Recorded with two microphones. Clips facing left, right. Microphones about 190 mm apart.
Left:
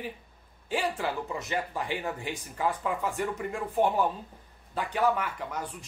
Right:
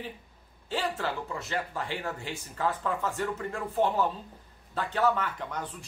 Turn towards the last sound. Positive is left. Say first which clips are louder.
# even
turn(degrees=10)  # may be behind; listen again after turning